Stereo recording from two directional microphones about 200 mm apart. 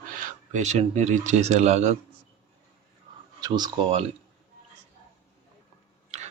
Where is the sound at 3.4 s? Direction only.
20° right (ahead or behind).